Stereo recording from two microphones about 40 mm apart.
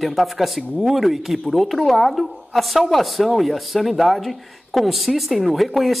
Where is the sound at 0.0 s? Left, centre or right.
Centre.